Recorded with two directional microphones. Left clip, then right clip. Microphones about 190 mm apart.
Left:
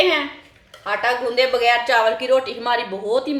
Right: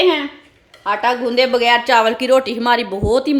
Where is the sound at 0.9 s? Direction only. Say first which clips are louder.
Right 3 dB; 45° right (ahead or behind).